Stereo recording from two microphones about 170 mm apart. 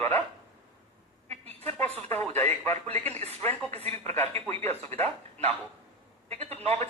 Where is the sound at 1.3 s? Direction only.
40° right (ahead or behind).